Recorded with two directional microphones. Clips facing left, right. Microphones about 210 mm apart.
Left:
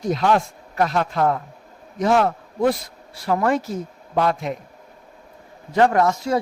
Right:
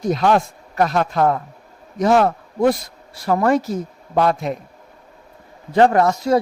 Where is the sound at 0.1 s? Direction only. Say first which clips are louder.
Right 2 dB; 45° right (ahead or behind).